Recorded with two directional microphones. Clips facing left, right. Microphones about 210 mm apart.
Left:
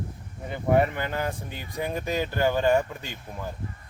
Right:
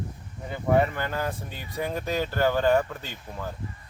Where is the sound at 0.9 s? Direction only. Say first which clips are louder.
Even; 15° left (ahead or behind).